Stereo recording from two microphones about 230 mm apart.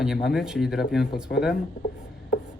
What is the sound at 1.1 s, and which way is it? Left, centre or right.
Speech, left.